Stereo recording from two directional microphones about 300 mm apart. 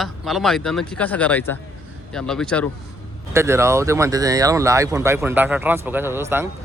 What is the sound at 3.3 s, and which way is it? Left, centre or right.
Speech, centre.